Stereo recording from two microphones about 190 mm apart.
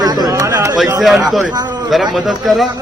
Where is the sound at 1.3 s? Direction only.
Centre (ahead or behind).